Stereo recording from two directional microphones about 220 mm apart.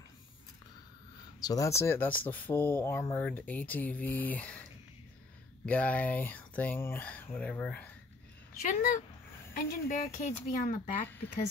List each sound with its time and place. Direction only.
1.4 s speech: 15° left (ahead or behind)
5.7 s speech: 5° left (ahead or behind)
8.6 s speech: 35° left (ahead or behind)